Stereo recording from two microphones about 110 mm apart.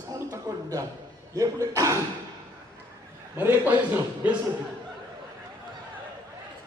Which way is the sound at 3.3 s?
15° right (ahead or behind).